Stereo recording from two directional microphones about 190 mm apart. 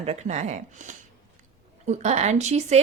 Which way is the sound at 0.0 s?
35° right (ahead or behind).